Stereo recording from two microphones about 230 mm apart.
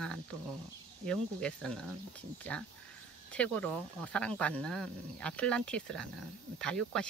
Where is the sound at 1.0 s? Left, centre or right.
Centre.